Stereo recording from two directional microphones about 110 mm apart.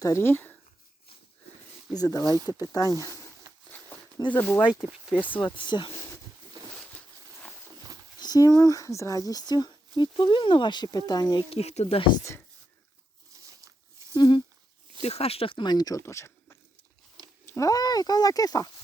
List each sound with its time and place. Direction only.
0.0 s speech: 25° left (ahead or behind)
1.9 s speech: 35° left (ahead or behind)
3.5 s a sound: 35° right (ahead or behind)
4.3 s speech: 20° left (ahead or behind)
5.5 s speech: 45° left (ahead or behind)
8.2 s speech: 35° left (ahead or behind)
11.5 s speech: 80° left
13.3 s a sound: 30° right (ahead or behind)
14.2 s speech: 45° left (ahead or behind)
15.0 s speech: 65° left (ahead or behind); by 16.6 s 25° left (ahead or behind)
17.4 s a sound: 20° left (ahead or behind)
17.7 s speech: 35° left (ahead or behind)